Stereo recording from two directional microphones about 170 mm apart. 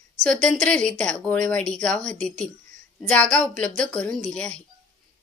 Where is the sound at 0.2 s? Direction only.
5° left (ahead or behind).